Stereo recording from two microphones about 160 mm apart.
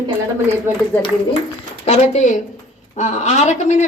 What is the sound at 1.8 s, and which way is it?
Speech, 45° left (ahead or behind).